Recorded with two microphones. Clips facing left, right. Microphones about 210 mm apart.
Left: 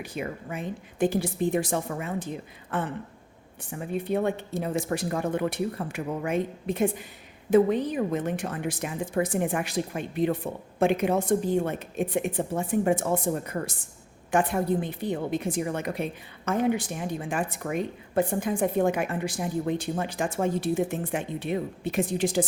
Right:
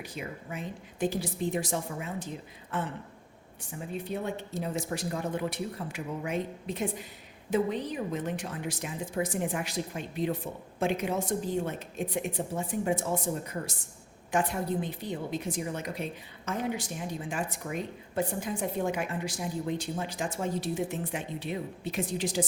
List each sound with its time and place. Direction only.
0.0 s a woman's voice: 55° left (ahead or behind)